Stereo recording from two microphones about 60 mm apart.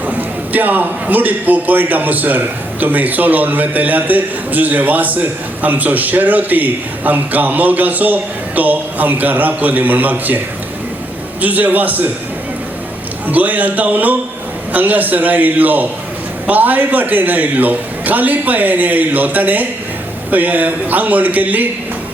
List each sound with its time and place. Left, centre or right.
0.0 s a man's voice: right
13.2 s a man's voice: right